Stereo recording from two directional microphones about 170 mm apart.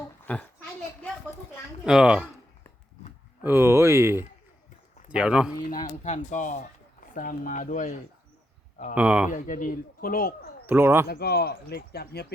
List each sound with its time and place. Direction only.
0.3 s a child's voice: 10° left (ahead or behind)
1.8 s speech: 5° right (ahead or behind)
3.4 s speech: 15° right (ahead or behind)
5.9 s speech: 45° left (ahead or behind)
9.0 s speech: 10° right (ahead or behind)
9.3 s speech: 50° left (ahead or behind)
10.7 s speech: 15° right (ahead or behind)
11.1 s chop: 65° left (ahead or behind)